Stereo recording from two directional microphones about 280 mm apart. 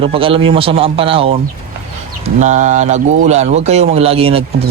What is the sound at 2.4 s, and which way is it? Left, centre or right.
Speech, right.